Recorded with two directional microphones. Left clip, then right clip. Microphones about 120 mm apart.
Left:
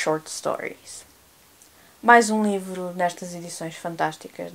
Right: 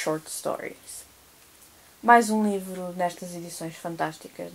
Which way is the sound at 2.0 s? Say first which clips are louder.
Left 3 dB; 20° left (ahead or behind).